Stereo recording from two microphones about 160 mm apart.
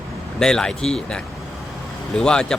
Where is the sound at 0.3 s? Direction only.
5° left (ahead or behind).